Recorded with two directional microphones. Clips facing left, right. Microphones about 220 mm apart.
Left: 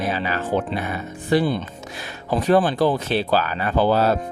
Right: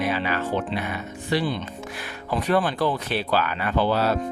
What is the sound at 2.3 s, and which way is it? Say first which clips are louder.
Speech: left 5 dB; 35° left (ahead or behind).